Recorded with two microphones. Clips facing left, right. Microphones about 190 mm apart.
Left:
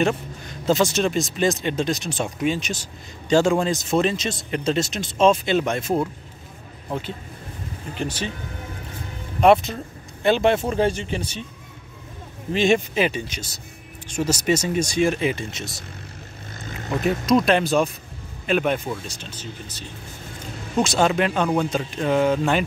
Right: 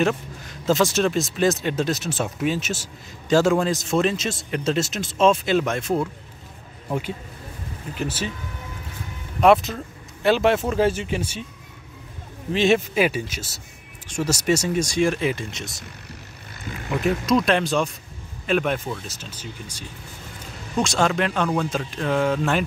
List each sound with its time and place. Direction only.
0.7 s a man's voice: centre (ahead or behind)
6.9 s speech: 10° right (ahead or behind)
9.4 s a man's voice: centre (ahead or behind)
12.5 s a man's voice: centre (ahead or behind)
16.5 s vehicle: 45° left (ahead or behind)
17.5 s a man's voice: 5° left (ahead or behind)